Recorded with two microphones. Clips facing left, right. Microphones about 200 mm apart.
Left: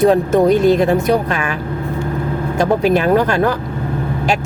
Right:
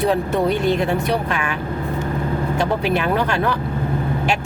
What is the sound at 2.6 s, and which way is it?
Speech, 40° left (ahead or behind).